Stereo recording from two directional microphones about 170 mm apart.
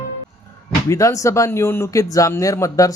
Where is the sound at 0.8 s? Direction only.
20° left (ahead or behind).